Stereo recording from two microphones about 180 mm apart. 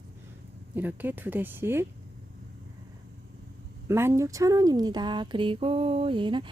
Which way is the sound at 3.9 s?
15° right (ahead or behind).